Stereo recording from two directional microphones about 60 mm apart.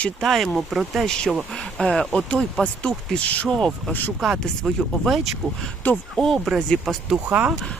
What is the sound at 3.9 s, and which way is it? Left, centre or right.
Speech, left.